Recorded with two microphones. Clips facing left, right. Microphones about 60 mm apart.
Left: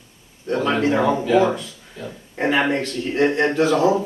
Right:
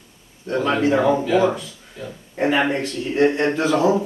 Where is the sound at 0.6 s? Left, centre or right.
Centre.